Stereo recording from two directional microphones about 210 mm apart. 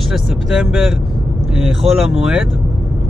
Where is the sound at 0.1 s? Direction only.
Centre (ahead or behind).